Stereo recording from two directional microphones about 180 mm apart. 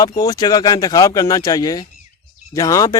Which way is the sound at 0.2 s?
20° left (ahead or behind).